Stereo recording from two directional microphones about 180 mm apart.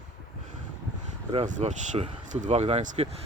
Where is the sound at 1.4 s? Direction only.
45° right (ahead or behind).